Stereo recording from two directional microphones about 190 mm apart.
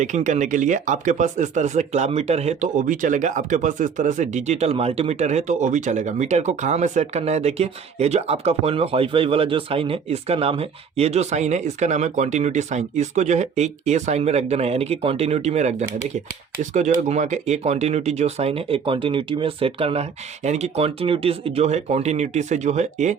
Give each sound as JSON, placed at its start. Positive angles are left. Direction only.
{"t": 0.0, "sound": "speech", "side_deg": -40}